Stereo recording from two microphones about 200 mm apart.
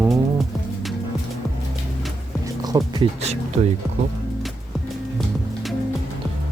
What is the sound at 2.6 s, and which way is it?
Music, 20° right (ahead or behind).